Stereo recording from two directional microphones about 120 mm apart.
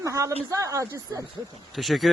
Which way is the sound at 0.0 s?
25° right (ahead or behind).